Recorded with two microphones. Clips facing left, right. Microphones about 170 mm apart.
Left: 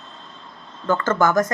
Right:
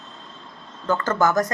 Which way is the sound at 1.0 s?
35° right (ahead or behind).